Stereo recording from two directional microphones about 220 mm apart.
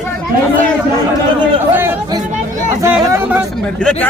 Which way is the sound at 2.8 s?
5° right (ahead or behind).